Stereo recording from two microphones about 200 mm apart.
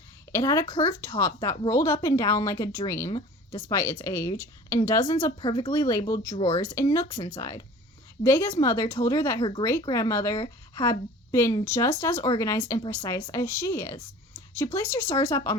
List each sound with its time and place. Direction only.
0.3 s a woman's voice: 15° left (ahead or behind)
9.4 s a woman's voice: 25° left (ahead or behind)